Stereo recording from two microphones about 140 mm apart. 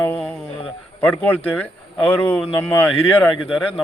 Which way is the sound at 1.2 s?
15° left (ahead or behind).